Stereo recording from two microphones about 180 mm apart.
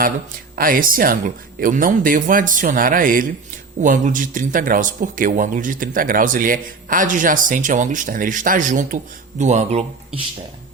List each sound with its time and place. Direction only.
0.5 s speech: 50° right (ahead or behind)